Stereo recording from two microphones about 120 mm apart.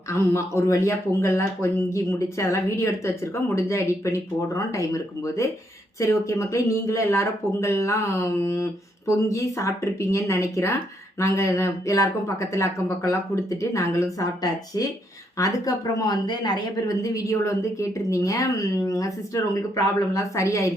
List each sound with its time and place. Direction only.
0.1 s speech: 25° left (ahead or behind)